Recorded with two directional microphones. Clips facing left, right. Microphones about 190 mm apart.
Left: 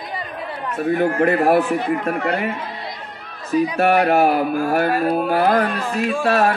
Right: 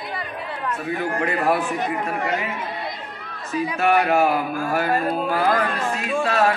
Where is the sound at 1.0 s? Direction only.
55° left (ahead or behind).